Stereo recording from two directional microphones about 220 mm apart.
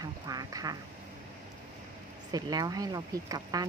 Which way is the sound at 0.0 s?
15° right (ahead or behind).